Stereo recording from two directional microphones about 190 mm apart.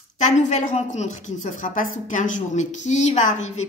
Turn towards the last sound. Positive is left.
turn(degrees=35)  # may be behind; listen again after turning